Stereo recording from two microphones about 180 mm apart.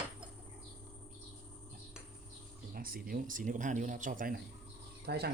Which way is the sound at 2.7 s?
55° right (ahead or behind).